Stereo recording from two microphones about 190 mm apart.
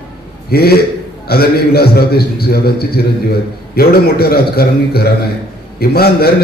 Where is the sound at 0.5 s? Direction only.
55° left (ahead or behind).